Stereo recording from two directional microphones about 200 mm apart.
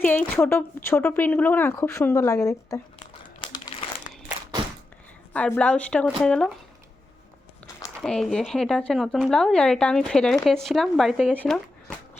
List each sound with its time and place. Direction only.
0.0 s speech: 10° left (ahead or behind)
3.4 s crumpling: 25° left (ahead or behind)
5.3 s speech: 5° left (ahead or behind)
8.0 s speech: centre (ahead or behind)